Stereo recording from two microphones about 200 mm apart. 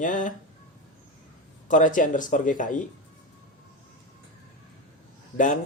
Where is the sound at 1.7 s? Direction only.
40° left (ahead or behind).